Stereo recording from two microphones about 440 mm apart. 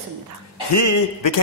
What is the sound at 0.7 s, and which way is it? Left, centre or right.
Speech, left.